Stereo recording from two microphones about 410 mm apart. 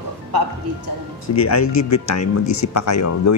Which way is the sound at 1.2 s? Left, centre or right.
Left.